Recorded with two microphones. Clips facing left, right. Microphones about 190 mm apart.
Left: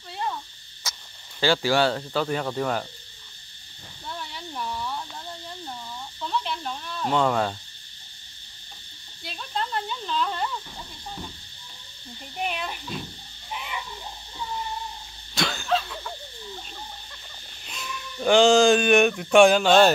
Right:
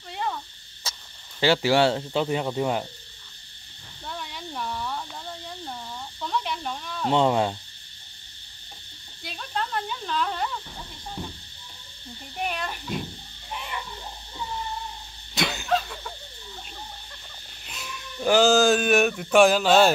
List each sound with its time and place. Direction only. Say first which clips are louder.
1.4 s speech: right 2 dB; 25° right (ahead or behind)
4.1 s a sound: right 1 dB; centre (ahead or behind)
6.4 s snake: even; 10° right (ahead or behind)
7.1 s speech: right 2 dB; 20° right (ahead or behind)
9.2 s a sound: even; 5° right (ahead or behind)
12.4 s speech: even; centre (ahead or behind)
13.5 s cat: even; 5° left (ahead or behind)
15.3 s a sound: even; 20° right (ahead or behind)
17.6 s speech: left 2 dB; 5° right (ahead or behind)